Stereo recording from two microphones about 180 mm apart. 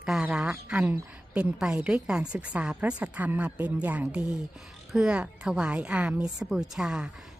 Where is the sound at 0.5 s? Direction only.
5° right (ahead or behind).